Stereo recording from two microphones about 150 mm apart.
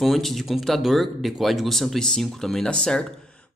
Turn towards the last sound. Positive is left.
turn(degrees=5)  # may be behind; listen again after turning